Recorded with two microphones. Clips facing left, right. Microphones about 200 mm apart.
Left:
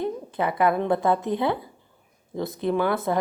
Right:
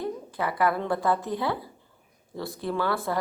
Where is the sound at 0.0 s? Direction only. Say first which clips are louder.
Left 4 dB; 20° left (ahead or behind).